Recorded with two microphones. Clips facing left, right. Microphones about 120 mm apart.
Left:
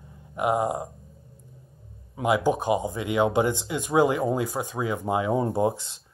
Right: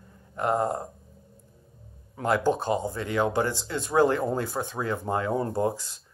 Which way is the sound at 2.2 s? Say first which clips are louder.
Left 1 dB; 10° left (ahead or behind).